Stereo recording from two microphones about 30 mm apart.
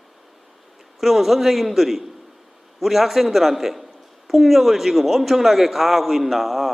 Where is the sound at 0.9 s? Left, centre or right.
Centre.